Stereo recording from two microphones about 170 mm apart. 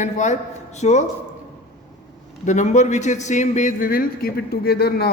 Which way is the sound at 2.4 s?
45° left (ahead or behind).